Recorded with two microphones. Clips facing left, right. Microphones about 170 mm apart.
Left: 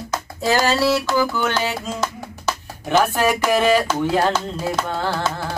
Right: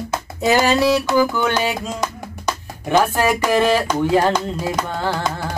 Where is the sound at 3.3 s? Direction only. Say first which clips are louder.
Right 1 dB; 5° left (ahead or behind).